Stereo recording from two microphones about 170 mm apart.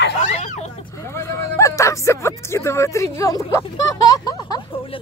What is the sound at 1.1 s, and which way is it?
A woman's voice, 15° left (ahead or behind).